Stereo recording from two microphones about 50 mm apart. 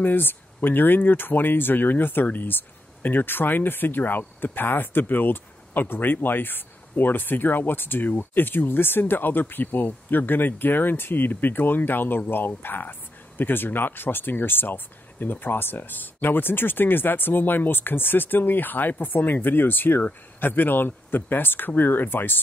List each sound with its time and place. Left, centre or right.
0.0 s speech: left